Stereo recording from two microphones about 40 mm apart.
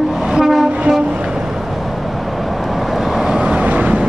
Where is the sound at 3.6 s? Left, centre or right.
Right.